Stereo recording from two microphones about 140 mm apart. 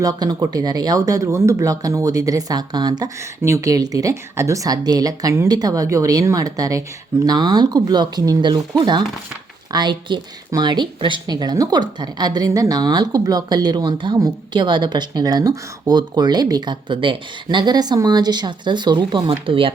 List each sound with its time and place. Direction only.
0.0 s a woman's voice: 25° right (ahead or behind)